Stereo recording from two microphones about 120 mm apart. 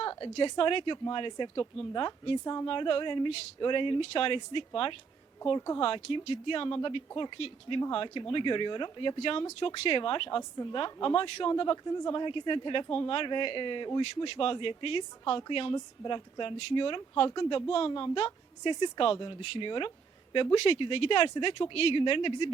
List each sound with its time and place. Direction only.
0.0 s a woman's voice: 40° left (ahead or behind)
2.4 s speech: 30° left (ahead or behind)
2.6 s speech: 45° left (ahead or behind)
5.5 s speech: 30° left (ahead or behind)
5.8 s speech: 45° left (ahead or behind)